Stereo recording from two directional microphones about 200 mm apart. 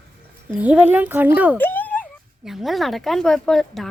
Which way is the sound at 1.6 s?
10° left (ahead or behind).